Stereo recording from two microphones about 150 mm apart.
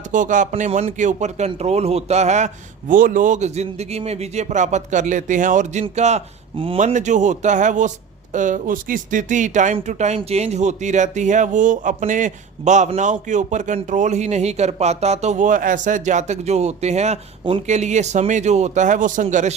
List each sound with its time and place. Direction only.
0.1 s speech: 60° right (ahead or behind)
0.5 s speech: 50° right (ahead or behind)
2.9 s speech: 65° right (ahead or behind); by 6.7 s 40° right (ahead or behind)
6.7 s speech: 55° right (ahead or behind)